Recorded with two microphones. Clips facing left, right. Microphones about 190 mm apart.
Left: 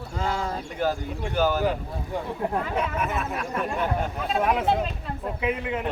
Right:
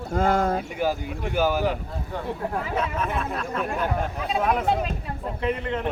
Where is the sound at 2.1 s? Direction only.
10° left (ahead or behind).